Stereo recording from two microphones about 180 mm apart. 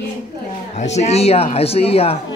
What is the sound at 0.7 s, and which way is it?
Speech, 40° left (ahead or behind).